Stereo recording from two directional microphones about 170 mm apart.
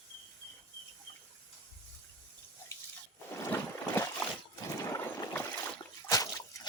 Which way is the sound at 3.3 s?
15° left (ahead or behind).